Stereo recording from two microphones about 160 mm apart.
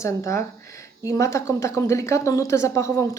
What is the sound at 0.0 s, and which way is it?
Speech, 20° left (ahead or behind).